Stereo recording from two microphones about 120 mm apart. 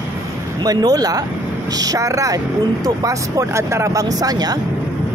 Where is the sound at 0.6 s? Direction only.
30° right (ahead or behind).